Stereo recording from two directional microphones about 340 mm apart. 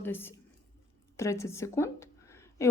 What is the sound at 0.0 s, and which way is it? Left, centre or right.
Speech, centre.